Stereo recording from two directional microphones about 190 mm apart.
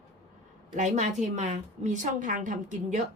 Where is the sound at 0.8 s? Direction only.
40° right (ahead or behind).